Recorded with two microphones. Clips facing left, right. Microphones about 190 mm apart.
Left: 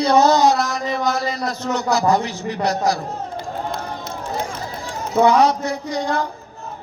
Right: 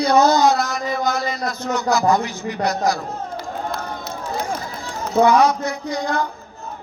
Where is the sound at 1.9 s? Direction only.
25° left (ahead or behind).